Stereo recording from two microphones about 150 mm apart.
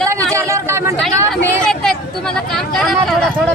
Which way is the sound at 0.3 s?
20° right (ahead or behind).